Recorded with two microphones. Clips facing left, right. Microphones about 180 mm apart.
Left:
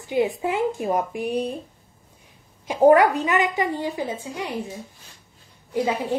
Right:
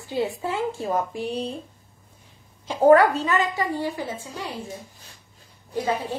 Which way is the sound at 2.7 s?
15° left (ahead or behind).